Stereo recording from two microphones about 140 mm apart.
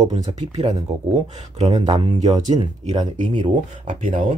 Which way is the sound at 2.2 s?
55° right (ahead or behind).